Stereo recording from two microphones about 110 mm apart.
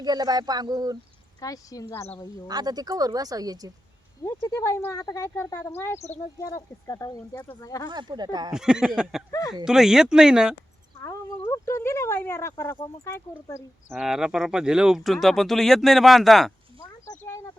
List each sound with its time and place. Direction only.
0.0 s speech: 35° right (ahead or behind)
1.4 s speech: 35° left (ahead or behind)
2.5 s speech: 35° right (ahead or behind)
4.2 s speech: 30° left (ahead or behind)
7.9 s speech: 45° right (ahead or behind)
8.5 s speech: 5° right (ahead or behind)
11.0 s speech: 30° left (ahead or behind)
13.9 s speech: 5° right (ahead or behind)
17.2 s speech: 25° left (ahead or behind)